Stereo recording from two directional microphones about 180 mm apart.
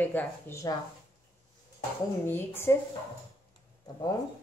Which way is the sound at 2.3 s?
10° left (ahead or behind).